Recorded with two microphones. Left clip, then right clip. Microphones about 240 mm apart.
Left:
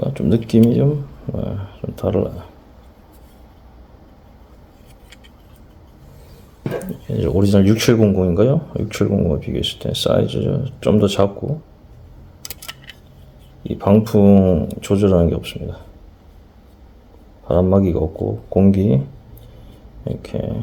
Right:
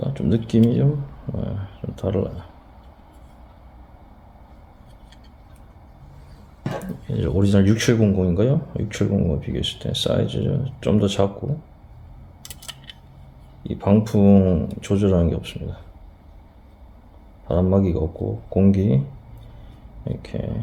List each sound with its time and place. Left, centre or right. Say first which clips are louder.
0.0 s speech: left 5 dB; left
1.3 s a sound: left 5 dB; left
2.0 s speech: left 5 dB; left
7.1 s speech: left 5 dB; centre
12.5 s a sound: left 1 dB; centre
13.7 s speech: left 5 dB; left
17.5 s speech: left 5 dB; left
20.1 s speech: left 5 dB; left